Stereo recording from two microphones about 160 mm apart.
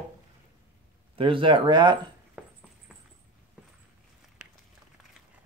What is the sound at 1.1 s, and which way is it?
Speech, 35° right (ahead or behind).